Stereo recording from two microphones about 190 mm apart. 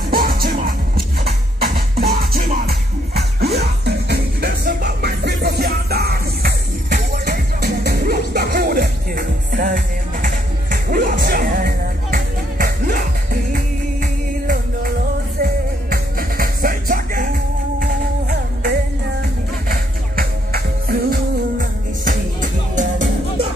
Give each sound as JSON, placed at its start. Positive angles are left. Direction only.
{"t": 0.1, "sound": "music", "side_deg": -50}
{"t": 15.4, "sound": "music", "side_deg": -50}